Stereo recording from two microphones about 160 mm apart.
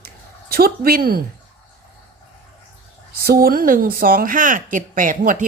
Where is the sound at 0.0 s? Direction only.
70° right (ahead or behind).